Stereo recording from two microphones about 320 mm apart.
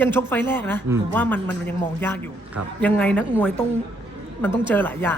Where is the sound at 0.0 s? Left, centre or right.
Centre.